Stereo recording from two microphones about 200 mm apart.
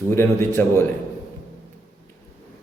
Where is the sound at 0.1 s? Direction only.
10° left (ahead or behind).